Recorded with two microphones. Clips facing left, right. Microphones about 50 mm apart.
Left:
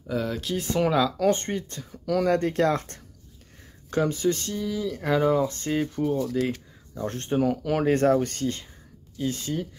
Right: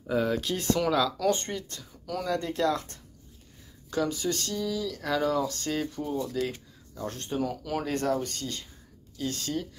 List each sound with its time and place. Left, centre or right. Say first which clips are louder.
0.0 s speech: right 2 dB; centre
0.7 s speech: left 6 dB; left
5.9 s speech: left 6 dB; left
7.0 s speech: left 6 dB; left
9.2 s speech: left 3 dB; centre